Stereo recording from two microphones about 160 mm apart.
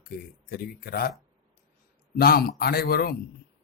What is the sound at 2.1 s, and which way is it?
A man's voice, 70° left (ahead or behind).